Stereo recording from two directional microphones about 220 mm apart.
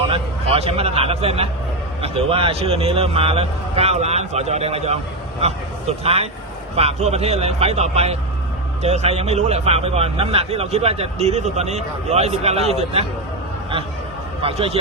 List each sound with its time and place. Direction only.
0.1 s a man's voice: 25° right (ahead or behind)
14.4 s a man's voice: 25° right (ahead or behind)